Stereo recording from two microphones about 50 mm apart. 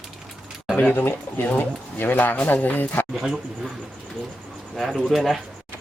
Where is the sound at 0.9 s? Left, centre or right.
Left.